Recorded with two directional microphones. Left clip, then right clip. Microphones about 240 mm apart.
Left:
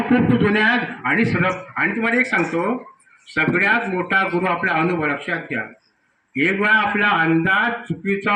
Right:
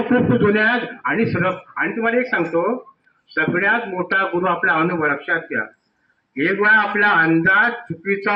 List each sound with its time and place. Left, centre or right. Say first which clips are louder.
0.1 s a man's voice: right 2 dB; left